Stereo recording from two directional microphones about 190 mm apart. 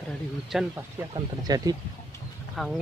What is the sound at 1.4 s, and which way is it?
Speech, 20° right (ahead or behind).